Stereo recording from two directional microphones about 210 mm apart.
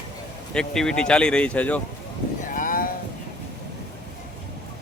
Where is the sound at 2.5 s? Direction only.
40° left (ahead or behind).